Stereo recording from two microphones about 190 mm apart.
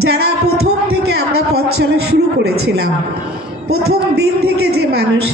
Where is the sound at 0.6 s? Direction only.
60° right (ahead or behind).